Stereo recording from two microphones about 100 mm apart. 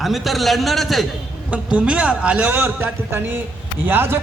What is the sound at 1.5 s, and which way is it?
A man's voice, 10° right (ahead or behind).